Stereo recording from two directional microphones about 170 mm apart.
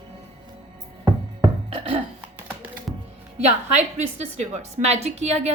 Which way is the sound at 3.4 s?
40° right (ahead or behind).